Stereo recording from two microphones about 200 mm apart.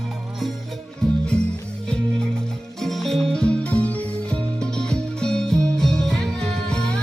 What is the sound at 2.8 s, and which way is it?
Music, centre (ahead or behind).